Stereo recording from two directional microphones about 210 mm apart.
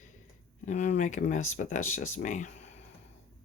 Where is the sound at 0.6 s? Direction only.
35° left (ahead or behind).